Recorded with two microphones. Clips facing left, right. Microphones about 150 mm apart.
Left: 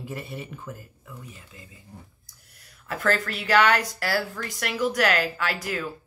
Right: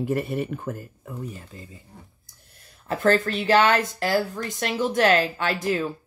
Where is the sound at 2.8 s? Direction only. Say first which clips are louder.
Right 5 dB; 25° right (ahead or behind).